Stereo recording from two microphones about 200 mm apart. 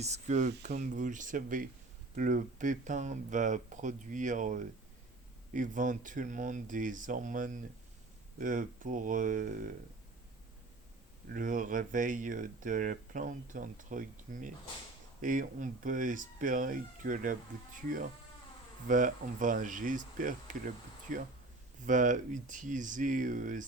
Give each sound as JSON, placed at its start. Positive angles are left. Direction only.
{"t": 0.0, "sound": "speech", "side_deg": -35}
{"t": 11.3, "sound": "speech", "side_deg": -40}